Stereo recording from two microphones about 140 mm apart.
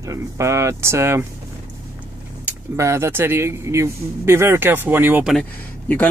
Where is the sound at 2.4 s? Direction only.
20° right (ahead or behind).